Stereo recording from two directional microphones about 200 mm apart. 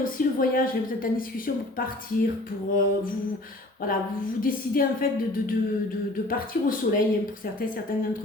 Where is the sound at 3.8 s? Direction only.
45° left (ahead or behind).